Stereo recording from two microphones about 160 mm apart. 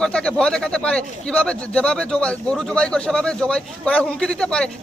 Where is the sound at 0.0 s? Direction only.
5° left (ahead or behind).